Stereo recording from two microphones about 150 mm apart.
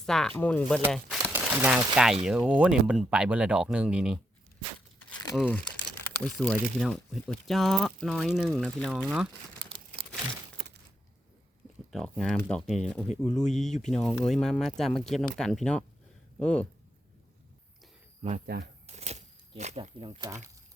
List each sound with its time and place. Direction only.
0.0 s speech: 5° left (ahead or behind)
1.2 s speech: 10° right (ahead or behind)
5.4 s speech: 10° left (ahead or behind)
9.0 s speech: 10° right (ahead or behind)
11.9 s speech: centre (ahead or behind)
13.4 s speech: 50° left (ahead or behind)
13.7 s speech: 5° left (ahead or behind)
18.2 s speech: 50° right (ahead or behind)
18.4 s speech: 90° right
18.9 s a sound: 45° right (ahead or behind); by 20.4 s 30° right (ahead or behind)